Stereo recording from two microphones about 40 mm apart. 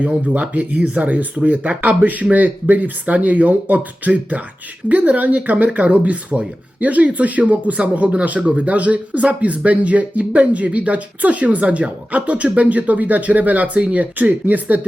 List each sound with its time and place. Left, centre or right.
0.3 s speech: right